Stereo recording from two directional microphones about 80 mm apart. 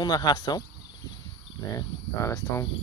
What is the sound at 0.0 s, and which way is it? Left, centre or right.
Speech, left.